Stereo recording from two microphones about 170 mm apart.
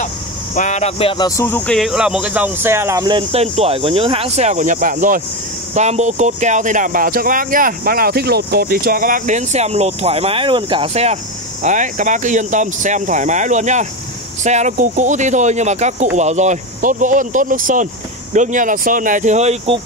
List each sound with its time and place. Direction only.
0.6 s speech: 45° left (ahead or behind); by 1.8 s 10° left (ahead or behind)
1.8 s speech: 5° right (ahead or behind); by 19.8 s 35° right (ahead or behind)